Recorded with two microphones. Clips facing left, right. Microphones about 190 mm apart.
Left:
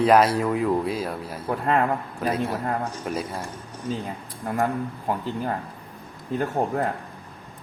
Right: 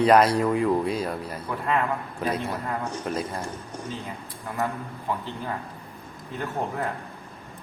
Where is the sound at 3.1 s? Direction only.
10° left (ahead or behind).